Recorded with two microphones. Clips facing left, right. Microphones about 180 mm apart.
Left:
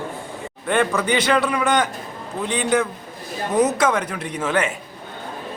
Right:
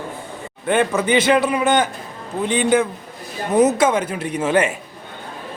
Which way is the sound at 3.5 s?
25° right (ahead or behind).